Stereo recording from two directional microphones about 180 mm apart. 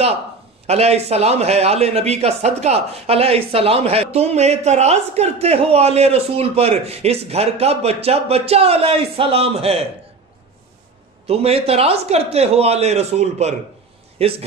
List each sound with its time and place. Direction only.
0.7 s a man's voice: 35° right (ahead or behind)
11.2 s a man's voice: 35° right (ahead or behind)